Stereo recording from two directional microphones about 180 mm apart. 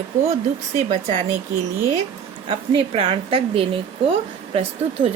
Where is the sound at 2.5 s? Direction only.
30° right (ahead or behind).